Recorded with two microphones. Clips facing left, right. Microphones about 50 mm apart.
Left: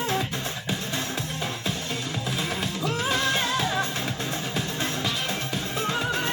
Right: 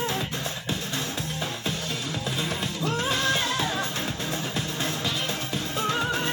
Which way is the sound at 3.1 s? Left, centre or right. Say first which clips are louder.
Left 2 dB; left.